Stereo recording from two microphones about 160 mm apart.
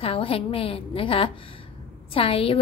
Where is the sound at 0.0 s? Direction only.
35° left (ahead or behind).